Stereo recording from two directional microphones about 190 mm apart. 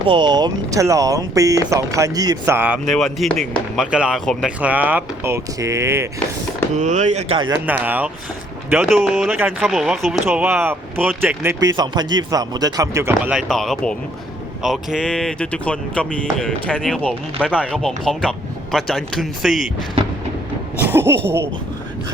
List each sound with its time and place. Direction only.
0.1 s speech: 25° right (ahead or behind)
2.9 s speech: centre (ahead or behind); by 6.1 s 15° right (ahead or behind)
6.7 s speech: 40° right (ahead or behind)
7.7 s speech: 10° right (ahead or behind)
13.5 s speech: centre (ahead or behind)
20.7 s speech: 10° right (ahead or behind)